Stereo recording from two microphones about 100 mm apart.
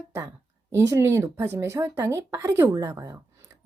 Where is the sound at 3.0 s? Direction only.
30° right (ahead or behind).